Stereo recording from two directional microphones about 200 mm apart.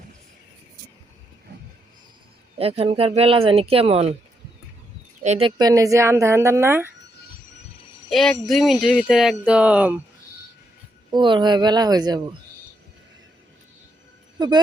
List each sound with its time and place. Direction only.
2.6 s speech: 30° right (ahead or behind)
5.2 s speech: 30° right (ahead or behind); by 6.9 s 10° right (ahead or behind)
8.1 s a sound: centre (ahead or behind)
11.1 s speech: 25° right (ahead or behind)
14.3 s speech: 20° right (ahead or behind)